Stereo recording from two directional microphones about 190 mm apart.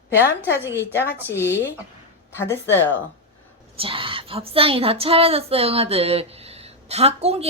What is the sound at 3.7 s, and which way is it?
Speech, 30° right (ahead or behind).